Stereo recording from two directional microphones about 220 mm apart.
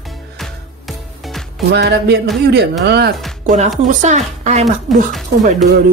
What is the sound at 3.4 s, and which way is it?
Speech, 35° right (ahead or behind).